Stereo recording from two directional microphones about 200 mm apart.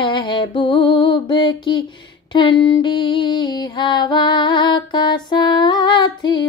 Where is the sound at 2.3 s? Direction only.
25° left (ahead or behind).